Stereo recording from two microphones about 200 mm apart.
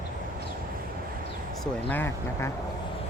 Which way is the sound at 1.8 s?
10° left (ahead or behind).